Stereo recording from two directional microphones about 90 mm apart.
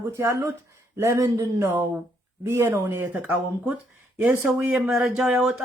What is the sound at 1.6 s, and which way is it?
Speech, 20° right (ahead or behind).